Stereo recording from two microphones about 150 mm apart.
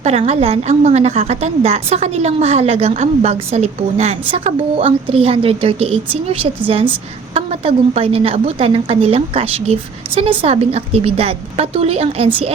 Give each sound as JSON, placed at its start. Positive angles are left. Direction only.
{"t": 0.0, "sound": "a woman's voice", "side_deg": -45}